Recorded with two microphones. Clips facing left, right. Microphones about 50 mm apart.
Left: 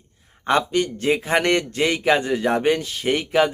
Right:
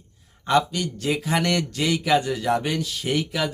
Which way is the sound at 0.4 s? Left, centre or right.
Left.